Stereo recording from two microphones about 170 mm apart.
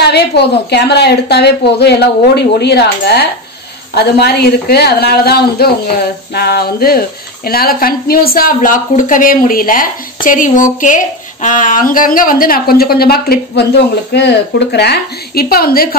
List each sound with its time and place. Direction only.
0.0 s a woman's voice: 75° left (ahead or behind)
14.1 s a woman's voice: 80° left; by 16.0 s 60° left (ahead or behind)